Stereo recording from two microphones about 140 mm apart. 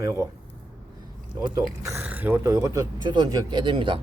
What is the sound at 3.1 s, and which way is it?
Speech, 35° right (ahead or behind).